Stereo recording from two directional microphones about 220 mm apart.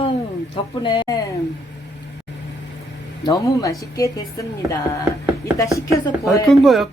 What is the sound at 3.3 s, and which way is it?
A woman's voice, 15° left (ahead or behind).